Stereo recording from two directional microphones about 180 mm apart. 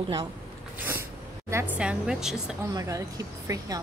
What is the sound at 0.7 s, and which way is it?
Snort, 10° right (ahead or behind).